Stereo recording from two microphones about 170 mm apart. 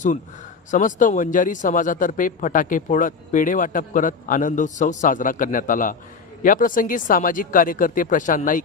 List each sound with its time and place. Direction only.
0.7 s speech: 50° left (ahead or behind)